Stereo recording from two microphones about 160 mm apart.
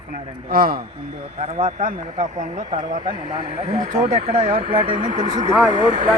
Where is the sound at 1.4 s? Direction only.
40° right (ahead or behind).